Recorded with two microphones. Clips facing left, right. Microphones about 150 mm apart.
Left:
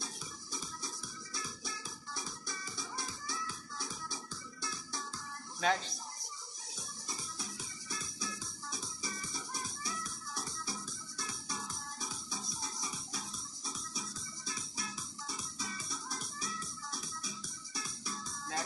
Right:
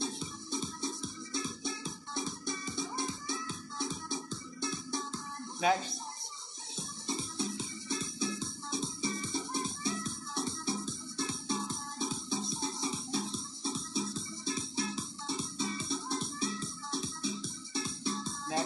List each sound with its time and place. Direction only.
0.0 s music: 25° right (ahead or behind)
5.6 s speech: 10° right (ahead or behind)
6.8 s music: 25° right (ahead or behind)